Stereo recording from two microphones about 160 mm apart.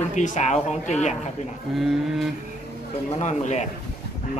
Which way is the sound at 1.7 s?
Centre (ahead or behind).